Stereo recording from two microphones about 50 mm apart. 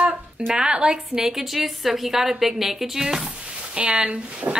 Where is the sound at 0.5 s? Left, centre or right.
Centre.